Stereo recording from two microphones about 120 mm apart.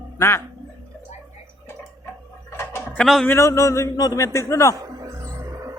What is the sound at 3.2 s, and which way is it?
Speech, 25° left (ahead or behind).